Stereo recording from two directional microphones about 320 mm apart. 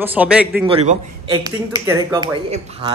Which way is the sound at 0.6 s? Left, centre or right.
Centre.